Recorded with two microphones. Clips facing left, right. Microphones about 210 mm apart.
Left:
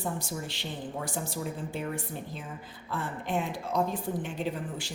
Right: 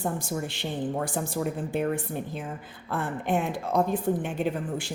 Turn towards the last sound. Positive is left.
turn(degrees=-55)  # may be behind; listen again after turning